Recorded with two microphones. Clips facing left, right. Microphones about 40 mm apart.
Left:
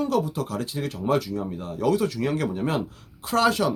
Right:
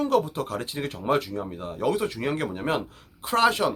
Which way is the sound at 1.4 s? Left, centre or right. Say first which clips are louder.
Left 1 dB; centre.